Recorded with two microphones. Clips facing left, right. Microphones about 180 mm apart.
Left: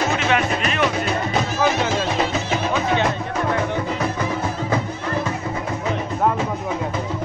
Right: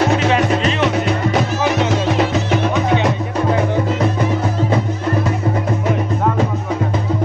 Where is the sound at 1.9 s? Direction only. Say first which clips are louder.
Right 5 dB; 70° right (ahead or behind).